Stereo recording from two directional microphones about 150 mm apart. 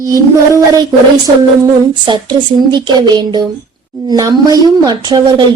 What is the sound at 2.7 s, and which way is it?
Child singing, 30° right (ahead or behind).